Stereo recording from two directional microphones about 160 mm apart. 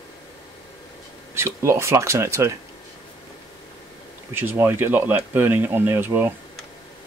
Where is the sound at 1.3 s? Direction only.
15° right (ahead or behind).